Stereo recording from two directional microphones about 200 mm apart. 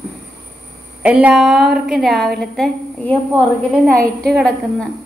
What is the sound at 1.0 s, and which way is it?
A woman's voice, 5° right (ahead or behind).